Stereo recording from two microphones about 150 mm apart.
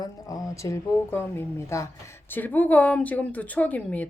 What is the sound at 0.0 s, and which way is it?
A woman's voice, 25° left (ahead or behind).